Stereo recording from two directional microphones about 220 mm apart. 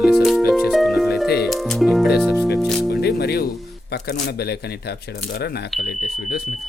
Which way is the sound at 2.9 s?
45° left (ahead or behind).